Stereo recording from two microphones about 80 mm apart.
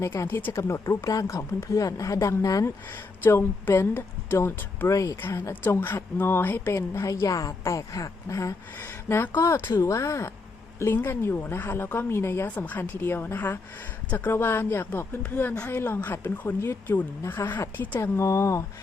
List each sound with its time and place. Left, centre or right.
0.0 s a woman's voice: left
3.2 s a woman's voice: left
4.9 s speech: left
5.2 s a woman's voice: left
6.7 s a woman's voice: left
8.8 s a woman's voice: left
9.8 s a woman's voice: left
12.5 s a woman's voice: left
18.0 s a woman's voice: left